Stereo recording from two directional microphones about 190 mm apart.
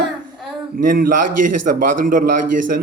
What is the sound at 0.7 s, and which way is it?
Speech, 45° right (ahead or behind).